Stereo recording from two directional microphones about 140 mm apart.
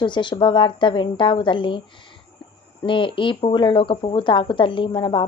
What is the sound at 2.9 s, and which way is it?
Speech, 35° left (ahead or behind).